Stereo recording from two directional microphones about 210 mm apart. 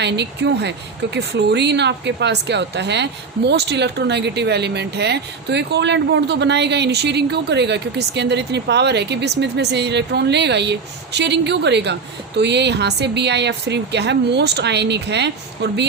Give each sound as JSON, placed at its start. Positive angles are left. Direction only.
{"t": 0.0, "sound": "speech", "side_deg": -55}